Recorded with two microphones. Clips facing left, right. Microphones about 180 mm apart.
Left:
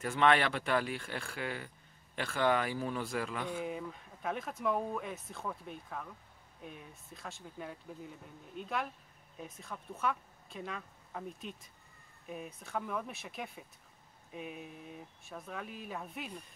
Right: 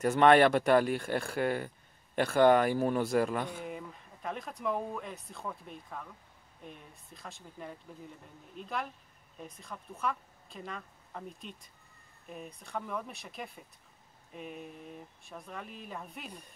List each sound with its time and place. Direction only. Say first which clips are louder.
0.0 s speech: right 7 dB; 45° right (ahead or behind)
3.6 s speech: left 2 dB; centre (ahead or behind)